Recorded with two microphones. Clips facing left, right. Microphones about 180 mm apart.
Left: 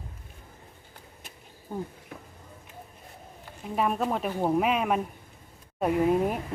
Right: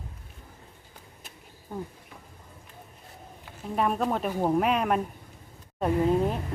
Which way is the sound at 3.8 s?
Centre (ahead or behind).